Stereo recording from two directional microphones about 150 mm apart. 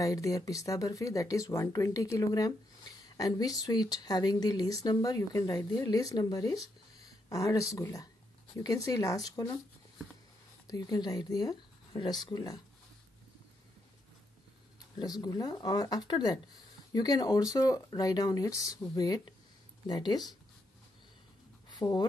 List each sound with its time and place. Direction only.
0.0 s speech: 20° left (ahead or behind)
10.7 s speech: 25° left (ahead or behind)
15.0 s speech: 25° left (ahead or behind)
21.6 s a sound: 30° left (ahead or behind)